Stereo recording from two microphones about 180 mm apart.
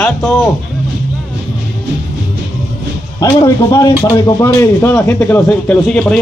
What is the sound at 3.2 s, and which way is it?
Speech, 20° left (ahead or behind).